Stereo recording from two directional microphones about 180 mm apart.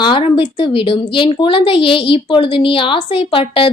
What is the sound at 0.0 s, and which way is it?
Speech, 30° left (ahead or behind).